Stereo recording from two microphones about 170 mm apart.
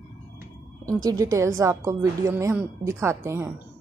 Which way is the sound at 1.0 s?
20° right (ahead or behind).